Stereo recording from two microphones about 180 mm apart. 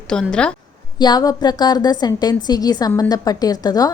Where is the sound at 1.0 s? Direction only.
20° left (ahead or behind).